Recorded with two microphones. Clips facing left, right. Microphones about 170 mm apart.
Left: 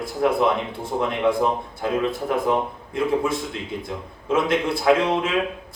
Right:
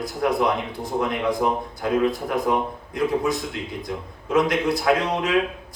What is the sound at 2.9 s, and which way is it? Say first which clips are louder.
A man's voice: left 1 dB; 25° left (ahead or behind).